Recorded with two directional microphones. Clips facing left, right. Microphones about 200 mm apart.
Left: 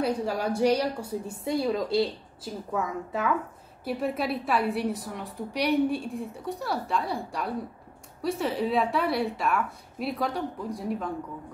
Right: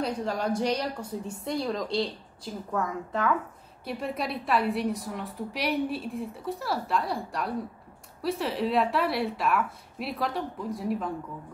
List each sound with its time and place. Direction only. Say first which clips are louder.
0.0 s a woman's voice: left 2 dB; 10° left (ahead or behind)